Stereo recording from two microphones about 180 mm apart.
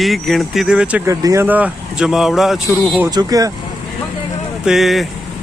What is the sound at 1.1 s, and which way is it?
Speech, 15° right (ahead or behind).